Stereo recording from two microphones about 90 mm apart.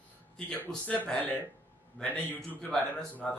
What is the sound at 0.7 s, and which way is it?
A man's voice, 10° left (ahead or behind).